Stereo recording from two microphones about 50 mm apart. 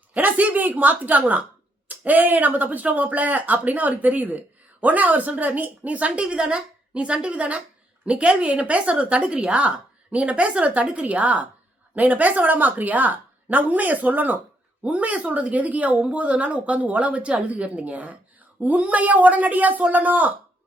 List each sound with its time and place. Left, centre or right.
0.1 s a woman's voice: right